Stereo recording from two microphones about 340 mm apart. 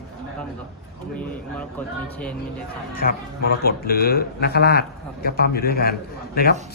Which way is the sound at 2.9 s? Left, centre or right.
Left.